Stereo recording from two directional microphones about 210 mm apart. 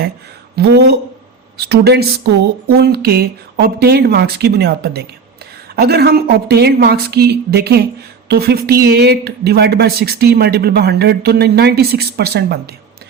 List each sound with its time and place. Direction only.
0.5 s speech: 50° right (ahead or behind)